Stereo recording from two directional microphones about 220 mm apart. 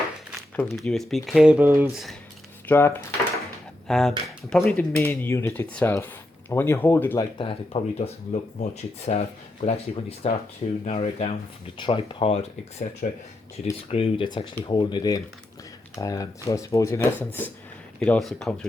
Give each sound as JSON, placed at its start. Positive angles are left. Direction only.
{"t": 0.5, "sound": "speech", "side_deg": 5}
{"t": 2.6, "sound": "speech", "side_deg": 10}
{"t": 7.3, "sound": "speech", "side_deg": 25}